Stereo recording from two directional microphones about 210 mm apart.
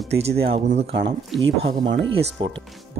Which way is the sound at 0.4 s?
25° right (ahead or behind).